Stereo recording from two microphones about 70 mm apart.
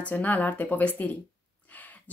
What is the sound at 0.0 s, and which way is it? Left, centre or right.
Speech, left.